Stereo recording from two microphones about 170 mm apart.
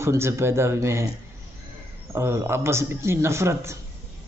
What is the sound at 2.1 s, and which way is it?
Speech, 15° right (ahead or behind).